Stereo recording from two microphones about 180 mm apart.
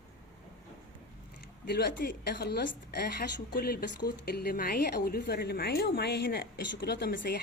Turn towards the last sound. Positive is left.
turn(degrees=65)  # may be behind; listen again after turning